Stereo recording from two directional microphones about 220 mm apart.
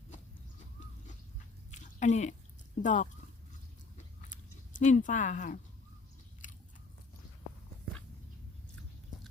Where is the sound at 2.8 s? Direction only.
35° left (ahead or behind).